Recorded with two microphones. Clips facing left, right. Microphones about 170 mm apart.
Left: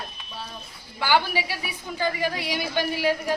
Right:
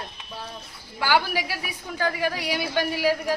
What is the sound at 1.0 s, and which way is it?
A woman's voice, 10° right (ahead or behind).